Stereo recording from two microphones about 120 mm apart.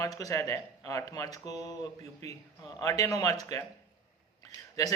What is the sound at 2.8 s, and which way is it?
Speech, 25° left (ahead or behind).